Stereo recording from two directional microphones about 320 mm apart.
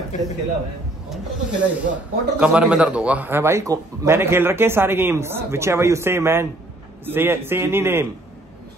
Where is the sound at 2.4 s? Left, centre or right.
Centre.